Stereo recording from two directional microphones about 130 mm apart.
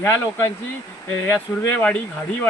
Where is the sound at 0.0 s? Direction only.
15° left (ahead or behind).